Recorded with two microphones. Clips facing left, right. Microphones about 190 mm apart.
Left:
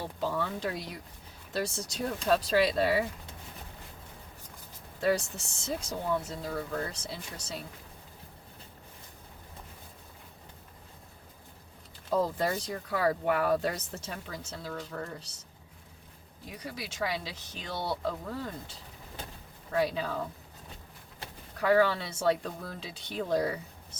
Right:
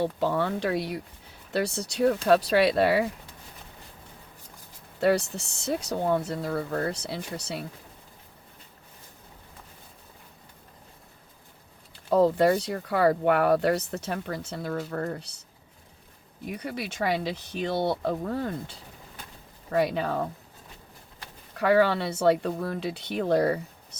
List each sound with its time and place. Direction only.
0.0 s speech: 65° right (ahead or behind)
4.9 s speech: 70° right (ahead or behind)
12.1 s speech: 65° right (ahead or behind)
16.6 s speech: 60° right (ahead or behind)
19.7 s speech: 65° right (ahead or behind)
21.6 s speech: 65° right (ahead or behind)